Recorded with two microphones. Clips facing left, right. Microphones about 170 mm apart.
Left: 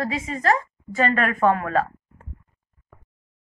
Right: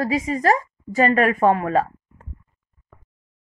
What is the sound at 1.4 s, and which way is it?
Speech, 30° right (ahead or behind).